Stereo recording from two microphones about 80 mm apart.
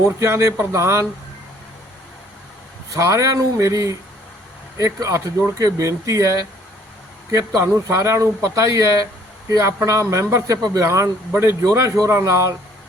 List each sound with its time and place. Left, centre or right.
0.2 s speech: right
2.9 s speech: right
4.9 s speech: right